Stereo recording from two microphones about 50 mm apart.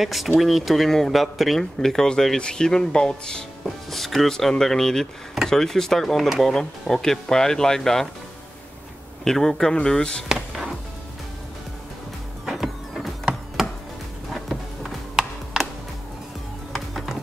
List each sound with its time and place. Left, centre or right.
0.0 s speech: centre
3.9 s speech: centre
9.2 s speech: centre
10.2 s music: centre
12.4 s printer: centre
14.3 s music: centre
15.2 s music: centre
16.7 s music: centre